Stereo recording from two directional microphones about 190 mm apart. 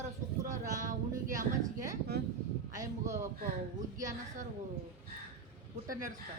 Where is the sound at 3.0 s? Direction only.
15° right (ahead or behind).